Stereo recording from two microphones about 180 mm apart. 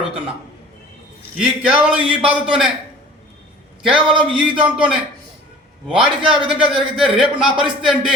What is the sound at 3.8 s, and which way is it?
Speech, 5° right (ahead or behind).